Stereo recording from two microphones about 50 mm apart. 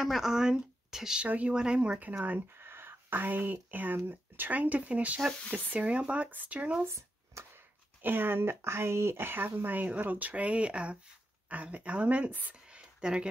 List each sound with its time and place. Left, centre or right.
0.0 s a woman's voice: centre
1.2 s speech: right
2.2 s speech: right
2.6 s speech: right
6.8 s a sound: right
7.5 s speech: right
12.6 s a sound: centre